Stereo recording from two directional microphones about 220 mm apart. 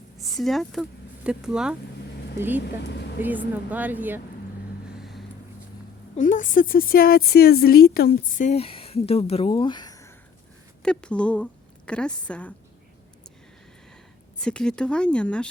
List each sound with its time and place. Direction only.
0.2 s speech: centre (ahead or behind)
2.8 s speech: 50° left (ahead or behind)
3.2 s speech: 10° right (ahead or behind)
4.9 s vehicle: centre (ahead or behind)
6.1 s speech: 35° left (ahead or behind); by 12.5 s 5° left (ahead or behind)
14.4 s speech: 5° left (ahead or behind)